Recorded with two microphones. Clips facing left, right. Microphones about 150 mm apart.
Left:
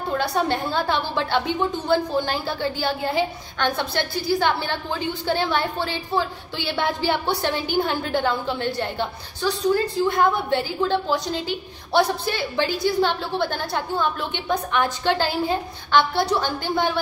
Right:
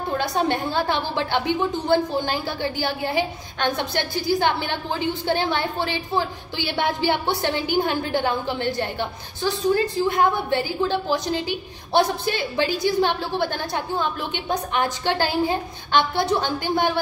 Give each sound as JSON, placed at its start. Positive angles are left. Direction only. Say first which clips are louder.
{"t": 0.2, "sound": "a woman's voice", "louder": "right 1 dB", "side_deg": -20}